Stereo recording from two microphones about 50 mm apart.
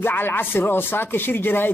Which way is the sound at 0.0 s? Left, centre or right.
Left.